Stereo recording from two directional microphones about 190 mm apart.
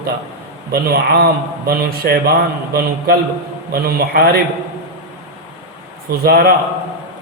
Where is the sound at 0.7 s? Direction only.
55° right (ahead or behind).